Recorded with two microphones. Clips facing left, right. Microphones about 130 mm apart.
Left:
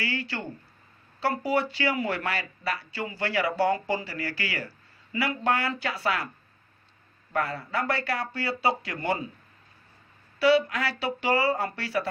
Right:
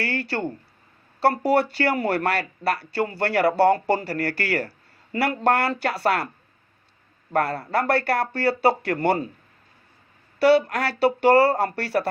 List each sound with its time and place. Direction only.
0.0 s speech: 60° right (ahead or behind)
7.3 s speech: 65° right (ahead or behind)
10.4 s speech: 60° right (ahead or behind)